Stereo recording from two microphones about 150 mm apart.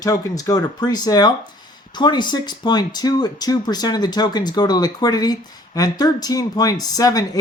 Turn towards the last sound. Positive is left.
turn(degrees=25)  # may be behind; listen again after turning